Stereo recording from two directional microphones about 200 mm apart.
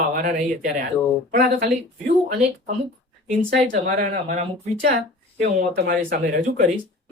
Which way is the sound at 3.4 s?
40° right (ahead or behind).